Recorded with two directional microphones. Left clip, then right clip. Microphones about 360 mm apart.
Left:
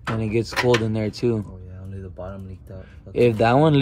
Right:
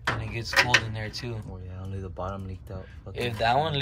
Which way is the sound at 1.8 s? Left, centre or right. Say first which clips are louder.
Even; centre.